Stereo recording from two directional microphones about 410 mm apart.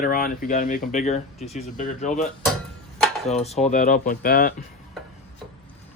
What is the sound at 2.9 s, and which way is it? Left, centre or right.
Dishes, centre.